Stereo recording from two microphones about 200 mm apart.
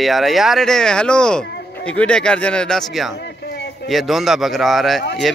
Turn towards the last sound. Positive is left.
turn(degrees=0)  # may be behind; listen again after turning